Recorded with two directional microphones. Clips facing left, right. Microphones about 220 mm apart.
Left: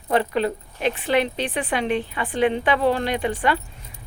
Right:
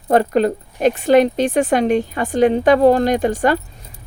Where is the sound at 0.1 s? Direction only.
45° right (ahead or behind).